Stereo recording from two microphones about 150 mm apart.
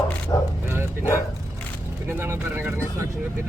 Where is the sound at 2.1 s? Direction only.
15° right (ahead or behind).